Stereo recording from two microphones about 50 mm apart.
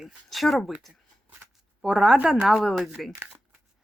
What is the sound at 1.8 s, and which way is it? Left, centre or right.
Speech, centre.